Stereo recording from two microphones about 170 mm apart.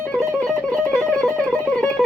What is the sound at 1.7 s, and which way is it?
Music, 5° left (ahead or behind).